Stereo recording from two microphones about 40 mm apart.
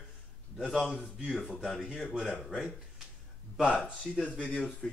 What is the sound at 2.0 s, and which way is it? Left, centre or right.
Speech, centre.